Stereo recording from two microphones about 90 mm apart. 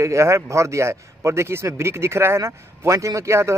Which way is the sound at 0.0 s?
35° right (ahead or behind).